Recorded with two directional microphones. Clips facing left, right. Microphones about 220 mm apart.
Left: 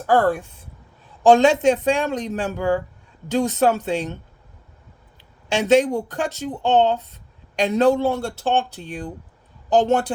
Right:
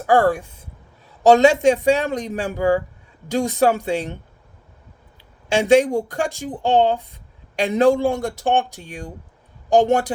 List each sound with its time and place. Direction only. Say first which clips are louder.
0.1 s speech: right 2 dB; 10° right (ahead or behind)
5.6 s a woman's voice: right 1 dB; 10° right (ahead or behind)